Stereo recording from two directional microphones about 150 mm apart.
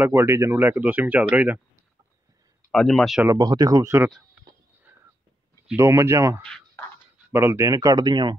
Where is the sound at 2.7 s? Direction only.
5° left (ahead or behind).